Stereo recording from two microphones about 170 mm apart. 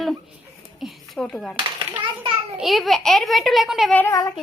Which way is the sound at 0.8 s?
Centre (ahead or behind).